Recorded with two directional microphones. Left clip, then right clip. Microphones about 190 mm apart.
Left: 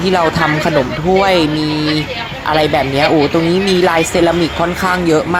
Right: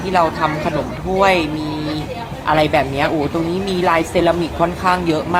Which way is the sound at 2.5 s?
35° left (ahead or behind).